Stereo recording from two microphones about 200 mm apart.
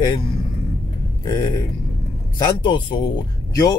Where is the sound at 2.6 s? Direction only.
25° left (ahead or behind).